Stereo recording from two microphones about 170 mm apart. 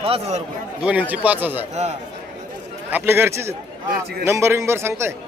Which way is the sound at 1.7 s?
40° right (ahead or behind).